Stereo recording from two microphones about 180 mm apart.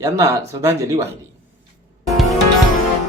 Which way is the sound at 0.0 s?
15° right (ahead or behind).